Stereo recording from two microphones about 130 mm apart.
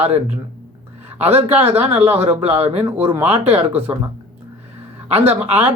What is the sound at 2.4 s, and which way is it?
Speech, 50° right (ahead or behind).